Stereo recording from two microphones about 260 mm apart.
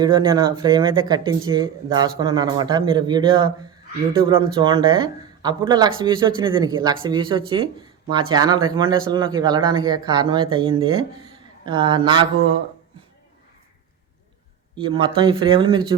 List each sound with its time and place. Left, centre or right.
0.0 s speech: centre
4.5 s speech: centre
14.8 s speech: centre